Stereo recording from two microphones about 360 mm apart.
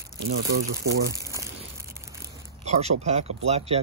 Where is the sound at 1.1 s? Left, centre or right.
Centre.